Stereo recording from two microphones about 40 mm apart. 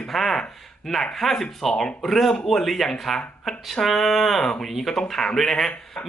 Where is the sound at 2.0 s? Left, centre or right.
Centre.